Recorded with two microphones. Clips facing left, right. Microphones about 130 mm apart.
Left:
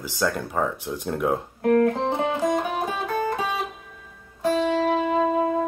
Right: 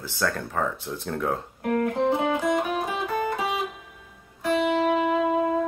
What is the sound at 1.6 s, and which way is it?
Music, 30° left (ahead or behind).